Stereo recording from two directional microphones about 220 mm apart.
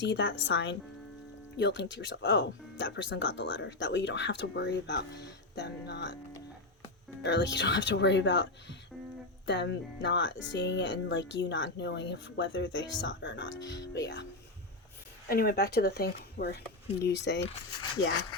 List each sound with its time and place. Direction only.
0.0 s speech: 55° left (ahead or behind)
7.3 s speech: 55° left (ahead or behind)
9.5 s speech: 55° left (ahead or behind)
15.3 s speech: 45° left (ahead or behind)